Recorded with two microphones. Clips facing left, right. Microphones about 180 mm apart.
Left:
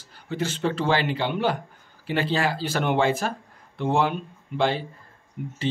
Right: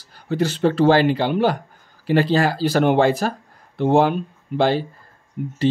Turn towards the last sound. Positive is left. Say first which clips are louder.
# right 6 dB
turn(degrees=-35)  # may be behind; listen again after turning